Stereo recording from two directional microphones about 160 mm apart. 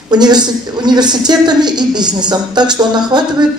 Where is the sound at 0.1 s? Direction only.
25° right (ahead or behind).